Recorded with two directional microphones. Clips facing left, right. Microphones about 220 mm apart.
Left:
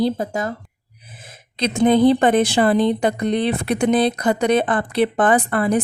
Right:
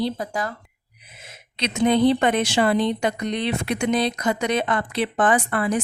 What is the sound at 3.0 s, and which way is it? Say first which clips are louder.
Speech: left 4 dB; 35° left (ahead or behind).